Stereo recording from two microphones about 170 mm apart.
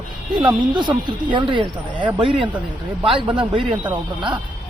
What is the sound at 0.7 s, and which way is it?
Speech, 25° right (ahead or behind).